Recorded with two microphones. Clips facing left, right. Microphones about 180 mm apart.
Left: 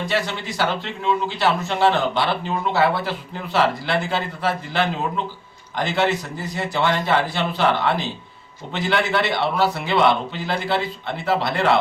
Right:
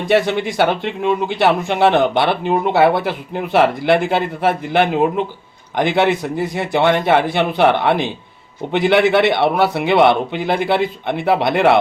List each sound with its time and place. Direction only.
0.3 s a man's voice: 60° right (ahead or behind)